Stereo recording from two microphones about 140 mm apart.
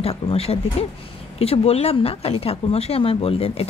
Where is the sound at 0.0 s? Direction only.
45° left (ahead or behind).